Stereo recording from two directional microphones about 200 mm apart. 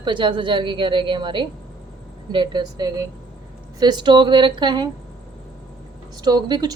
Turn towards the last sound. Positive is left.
turn(degrees=-20)  # may be behind; listen again after turning